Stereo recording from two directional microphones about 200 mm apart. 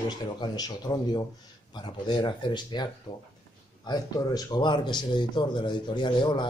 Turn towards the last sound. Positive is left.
turn(degrees=25)  # may be behind; listen again after turning